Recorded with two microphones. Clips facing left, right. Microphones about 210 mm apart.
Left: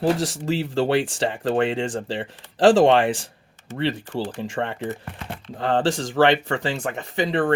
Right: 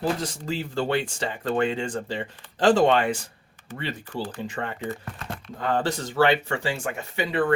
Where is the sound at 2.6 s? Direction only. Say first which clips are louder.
Left 4 dB; 90° left.